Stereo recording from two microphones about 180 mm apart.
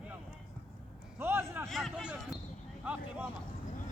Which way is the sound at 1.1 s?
10° right (ahead or behind).